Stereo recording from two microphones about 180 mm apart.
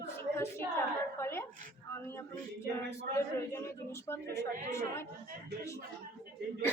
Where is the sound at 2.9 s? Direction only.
15° left (ahead or behind).